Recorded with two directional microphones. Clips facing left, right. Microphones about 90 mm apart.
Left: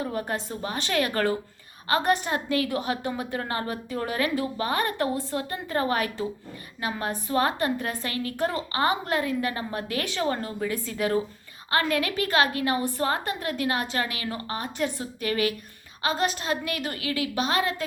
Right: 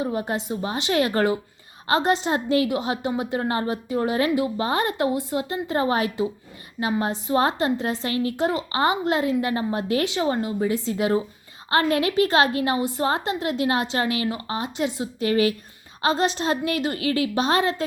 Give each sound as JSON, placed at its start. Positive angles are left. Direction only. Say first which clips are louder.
{"t": 0.0, "sound": "a woman's voice", "louder": "right 4 dB", "side_deg": -20}